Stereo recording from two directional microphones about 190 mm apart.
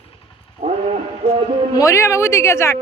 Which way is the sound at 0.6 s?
45° right (ahead or behind).